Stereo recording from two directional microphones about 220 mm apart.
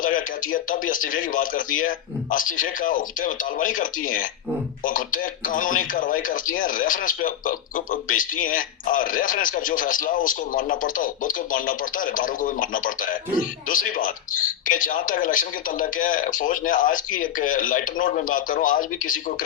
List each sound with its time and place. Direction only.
0.0 s speech: 40° left (ahead or behind)